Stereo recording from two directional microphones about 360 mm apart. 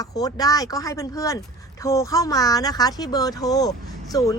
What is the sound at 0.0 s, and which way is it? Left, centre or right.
Speech, centre.